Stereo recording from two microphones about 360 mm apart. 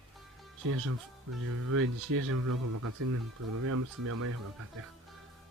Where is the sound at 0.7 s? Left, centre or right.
Right.